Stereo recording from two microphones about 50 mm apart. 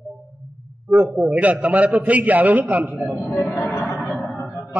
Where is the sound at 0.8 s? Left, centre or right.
Right.